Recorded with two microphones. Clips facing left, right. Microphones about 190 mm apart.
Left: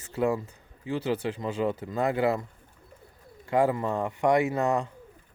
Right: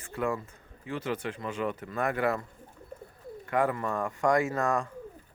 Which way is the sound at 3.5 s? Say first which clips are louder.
Left 4 dB; 25° left (ahead or behind).